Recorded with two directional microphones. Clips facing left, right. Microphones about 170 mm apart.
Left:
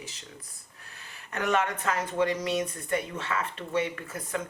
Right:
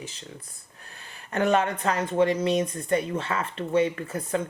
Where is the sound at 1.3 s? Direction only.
30° right (ahead or behind).